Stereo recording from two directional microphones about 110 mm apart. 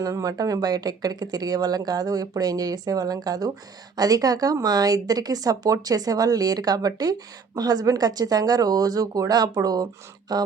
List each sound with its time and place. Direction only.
0.0 s speech: 30° right (ahead or behind)